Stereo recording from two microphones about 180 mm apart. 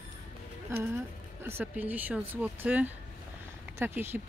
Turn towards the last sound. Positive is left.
turn(degrees=-10)  # may be behind; listen again after turning